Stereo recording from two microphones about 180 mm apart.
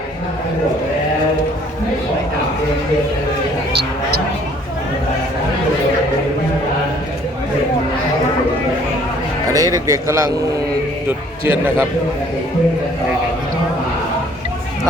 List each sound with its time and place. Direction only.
9.5 s a man's voice: 20° right (ahead or behind)
11.4 s a man's voice: 10° right (ahead or behind)